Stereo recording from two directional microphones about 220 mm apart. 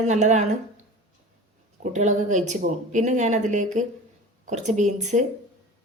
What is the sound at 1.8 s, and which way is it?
Speech, 35° right (ahead or behind).